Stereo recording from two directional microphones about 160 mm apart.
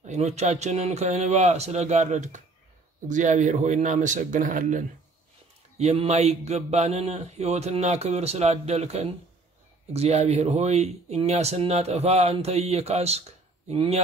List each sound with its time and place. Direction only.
0.0 s a man's voice: 45° right (ahead or behind)
5.8 s speech: 40° right (ahead or behind)